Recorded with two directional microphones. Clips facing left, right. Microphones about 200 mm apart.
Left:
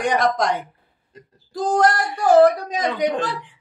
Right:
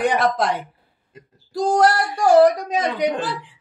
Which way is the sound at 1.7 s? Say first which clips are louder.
Right 1 dB; 10° right (ahead or behind).